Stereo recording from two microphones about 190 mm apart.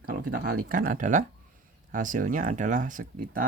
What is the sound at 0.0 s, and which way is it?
Speech, 55° right (ahead or behind).